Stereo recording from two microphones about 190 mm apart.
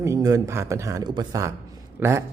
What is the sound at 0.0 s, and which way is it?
A man's voice, 15° right (ahead or behind).